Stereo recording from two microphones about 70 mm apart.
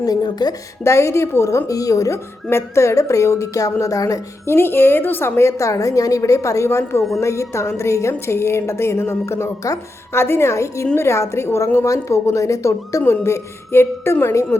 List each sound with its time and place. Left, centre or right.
0.0 s speech: left
0.9 s a woman's voice: left
2.5 s a woman's voice: left
4.4 s a woman's voice: left